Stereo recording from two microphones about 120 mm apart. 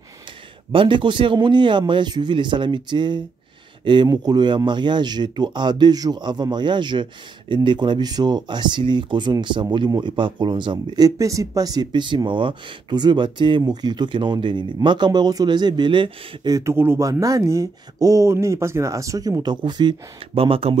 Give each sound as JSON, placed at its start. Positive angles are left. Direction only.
{"t": 0.7, "sound": "speech", "side_deg": -45}
{"t": 11.1, "sound": "speech", "side_deg": -25}
{"t": 16.5, "sound": "speech", "side_deg": -20}